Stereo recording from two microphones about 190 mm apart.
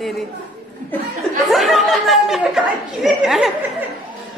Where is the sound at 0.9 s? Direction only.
10° left (ahead or behind).